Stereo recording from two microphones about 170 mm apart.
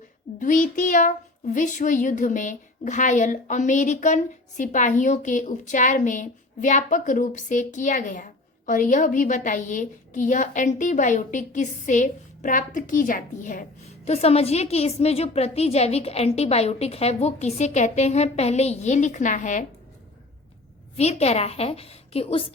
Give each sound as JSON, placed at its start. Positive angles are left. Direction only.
{"t": 0.3, "sound": "a woman's voice", "side_deg": 50}
{"t": 20.9, "sound": "a woman's voice", "side_deg": 40}